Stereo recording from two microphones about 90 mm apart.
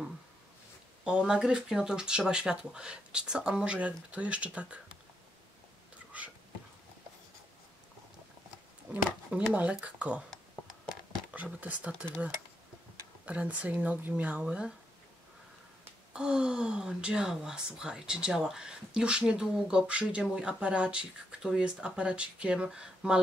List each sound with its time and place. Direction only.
1.0 s speech: 10° right (ahead or behind)
9.5 s speech: 15° right (ahead or behind)
16.1 s speech: 10° right (ahead or behind)